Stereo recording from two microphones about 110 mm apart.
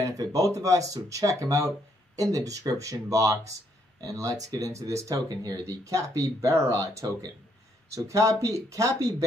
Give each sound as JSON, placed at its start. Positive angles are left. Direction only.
{"t": 0.0, "sound": "speech", "side_deg": -35}